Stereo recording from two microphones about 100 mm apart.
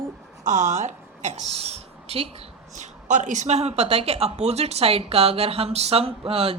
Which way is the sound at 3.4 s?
90° right.